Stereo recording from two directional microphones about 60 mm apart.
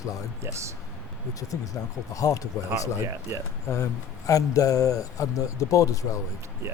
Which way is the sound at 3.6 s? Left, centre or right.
Left.